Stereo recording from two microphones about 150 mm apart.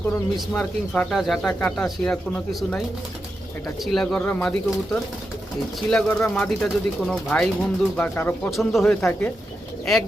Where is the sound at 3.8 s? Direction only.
Centre (ahead or behind).